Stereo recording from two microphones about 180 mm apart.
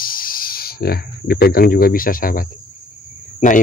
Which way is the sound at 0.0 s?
55° left (ahead or behind).